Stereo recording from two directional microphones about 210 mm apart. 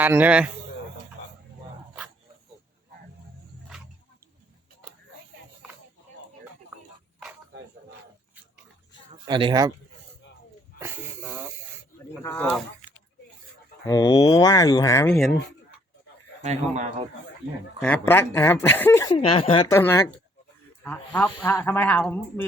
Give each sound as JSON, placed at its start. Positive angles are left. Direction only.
{"t": 0.0, "sound": "a man's voice", "side_deg": -10}
{"t": 9.2, "sound": "speech", "side_deg": -20}
{"t": 10.8, "sound": "wheeze", "side_deg": -10}
{"t": 12.2, "sound": "speech", "side_deg": 10}
{"t": 13.8, "sound": "speech", "side_deg": 20}
{"t": 15.1, "sound": "speech", "side_deg": 0}
{"t": 16.4, "sound": "a man's voice", "side_deg": -35}
{"t": 17.7, "sound": "speech", "side_deg": 10}
{"t": 19.1, "sound": "speech", "side_deg": 25}
{"t": 19.7, "sound": "speech", "side_deg": 10}